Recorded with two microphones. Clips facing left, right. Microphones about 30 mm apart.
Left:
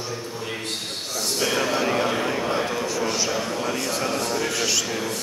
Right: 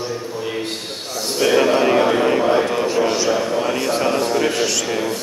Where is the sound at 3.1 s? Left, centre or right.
Centre.